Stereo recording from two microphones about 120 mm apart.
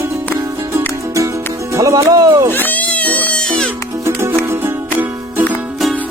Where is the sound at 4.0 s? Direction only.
20° right (ahead or behind).